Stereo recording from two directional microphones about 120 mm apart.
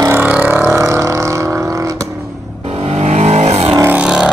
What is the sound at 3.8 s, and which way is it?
Vehicle, 10° right (ahead or behind).